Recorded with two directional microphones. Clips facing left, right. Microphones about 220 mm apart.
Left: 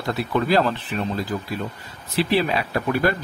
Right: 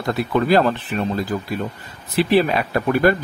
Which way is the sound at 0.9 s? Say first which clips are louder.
Right 3 dB; 50° right (ahead or behind).